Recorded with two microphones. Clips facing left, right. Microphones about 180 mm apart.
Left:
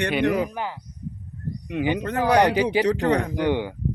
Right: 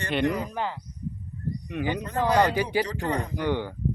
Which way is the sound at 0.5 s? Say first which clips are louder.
Even; 10° left (ahead or behind).